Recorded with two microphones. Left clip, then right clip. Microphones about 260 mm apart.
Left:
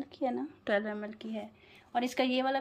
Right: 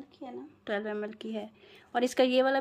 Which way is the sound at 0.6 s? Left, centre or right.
Centre.